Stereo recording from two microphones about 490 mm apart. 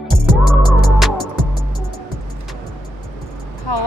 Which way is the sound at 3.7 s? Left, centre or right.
Left.